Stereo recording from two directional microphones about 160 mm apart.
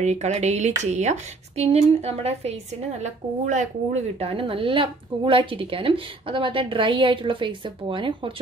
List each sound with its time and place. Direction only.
0.0 s speech: 45° right (ahead or behind)
4.2 s a woman's voice: 35° right (ahead or behind)